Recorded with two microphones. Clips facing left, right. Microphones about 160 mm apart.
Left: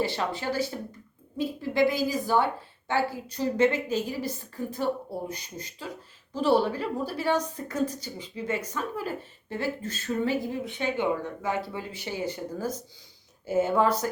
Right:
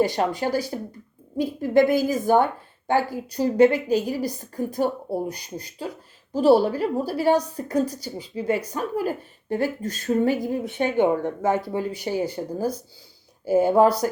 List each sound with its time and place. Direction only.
0.0 s a woman's voice: 40° right (ahead or behind)
1.4 s a woman's voice: 50° right (ahead or behind)
13.4 s a woman's voice: 35° right (ahead or behind)